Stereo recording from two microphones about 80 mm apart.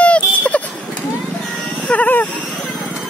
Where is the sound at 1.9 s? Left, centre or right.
Centre.